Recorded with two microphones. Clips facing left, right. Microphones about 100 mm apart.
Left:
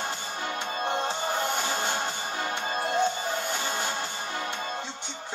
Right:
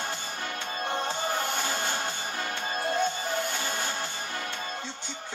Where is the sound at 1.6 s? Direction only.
20° left (ahead or behind).